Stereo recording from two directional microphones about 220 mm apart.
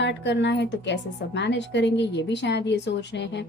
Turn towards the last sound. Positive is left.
turn(degrees=50)  # may be behind; listen again after turning